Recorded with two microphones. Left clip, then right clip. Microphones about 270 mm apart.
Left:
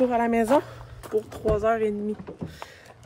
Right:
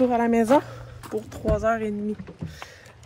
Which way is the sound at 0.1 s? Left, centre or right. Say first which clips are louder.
Right 2 dB; centre.